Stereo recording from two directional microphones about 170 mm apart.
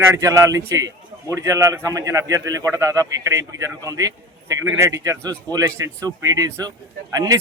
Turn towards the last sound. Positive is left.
turn(degrees=-20)  # may be behind; listen again after turning